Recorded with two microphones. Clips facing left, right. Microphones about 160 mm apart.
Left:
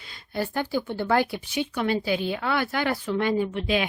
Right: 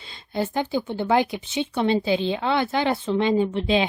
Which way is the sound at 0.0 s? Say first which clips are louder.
Right 3 dB; 25° right (ahead or behind).